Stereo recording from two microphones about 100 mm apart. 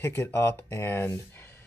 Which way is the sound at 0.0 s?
25° left (ahead or behind).